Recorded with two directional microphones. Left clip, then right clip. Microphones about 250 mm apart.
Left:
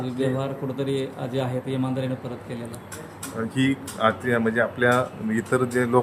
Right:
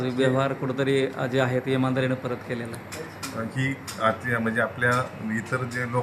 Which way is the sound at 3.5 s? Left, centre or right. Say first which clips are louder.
Left 5 dB; left.